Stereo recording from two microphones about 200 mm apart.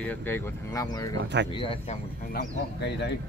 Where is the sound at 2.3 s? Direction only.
55° left (ahead or behind).